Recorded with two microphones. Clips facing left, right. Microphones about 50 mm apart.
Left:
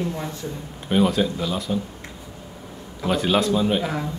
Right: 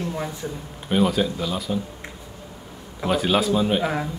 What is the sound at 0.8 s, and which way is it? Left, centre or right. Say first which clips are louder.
Speech: left 1 dB; centre.